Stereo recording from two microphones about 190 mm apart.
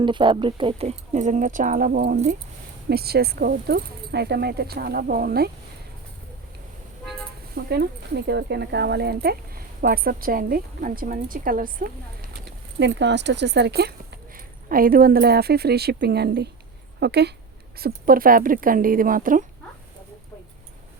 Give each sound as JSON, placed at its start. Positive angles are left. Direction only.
{"t": 0.0, "sound": "speech", "side_deg": -25}
{"t": 7.5, "sound": "speech", "side_deg": -60}
{"t": 12.8, "sound": "speech", "side_deg": -70}
{"t": 14.3, "sound": "speech", "side_deg": -50}
{"t": 17.7, "sound": "speech", "side_deg": -50}